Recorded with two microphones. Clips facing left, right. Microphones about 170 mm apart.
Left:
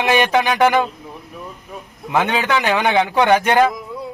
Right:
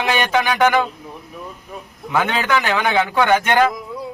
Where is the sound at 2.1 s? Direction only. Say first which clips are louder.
Left 1 dB; 20° left (ahead or behind).